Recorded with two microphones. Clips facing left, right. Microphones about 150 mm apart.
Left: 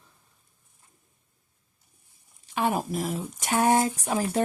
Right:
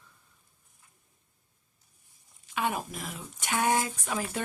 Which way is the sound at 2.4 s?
35° left (ahead or behind).